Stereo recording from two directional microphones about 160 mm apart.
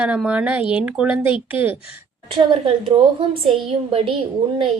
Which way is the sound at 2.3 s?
35° right (ahead or behind).